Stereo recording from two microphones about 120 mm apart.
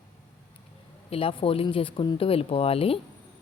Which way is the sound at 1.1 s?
50° left (ahead or behind).